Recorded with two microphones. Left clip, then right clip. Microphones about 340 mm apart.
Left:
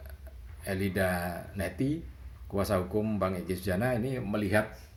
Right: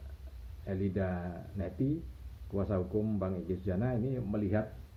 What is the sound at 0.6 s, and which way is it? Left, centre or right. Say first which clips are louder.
Speech: left 6 dB; left.